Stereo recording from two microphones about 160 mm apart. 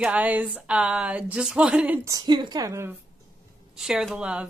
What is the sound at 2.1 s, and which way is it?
Speech, 25° right (ahead or behind).